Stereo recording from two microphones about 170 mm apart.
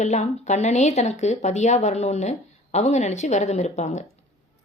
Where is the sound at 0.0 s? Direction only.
40° left (ahead or behind).